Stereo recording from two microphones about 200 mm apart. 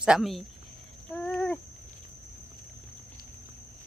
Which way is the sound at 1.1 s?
5° left (ahead or behind).